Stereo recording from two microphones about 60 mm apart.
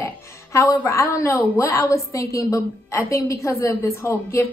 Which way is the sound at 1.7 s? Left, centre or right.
Left.